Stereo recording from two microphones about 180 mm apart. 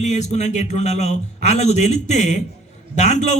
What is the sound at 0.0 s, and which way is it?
A man's voice, 40° left (ahead or behind).